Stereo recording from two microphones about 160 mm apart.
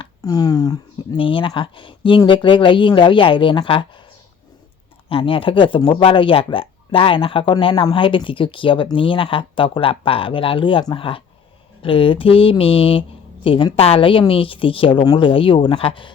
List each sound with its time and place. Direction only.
0.0 s speech: 25° left (ahead or behind)
5.0 s speech: 35° left (ahead or behind)